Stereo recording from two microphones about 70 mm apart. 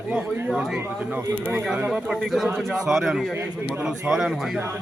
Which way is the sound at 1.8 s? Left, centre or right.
Centre.